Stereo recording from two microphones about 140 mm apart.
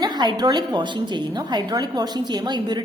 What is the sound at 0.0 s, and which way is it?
A woman's voice, 30° right (ahead or behind).